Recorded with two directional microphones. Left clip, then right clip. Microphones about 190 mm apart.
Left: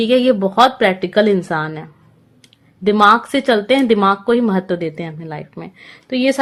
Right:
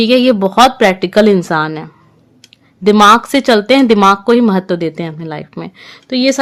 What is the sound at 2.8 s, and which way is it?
A woman's voice, 35° right (ahead or behind).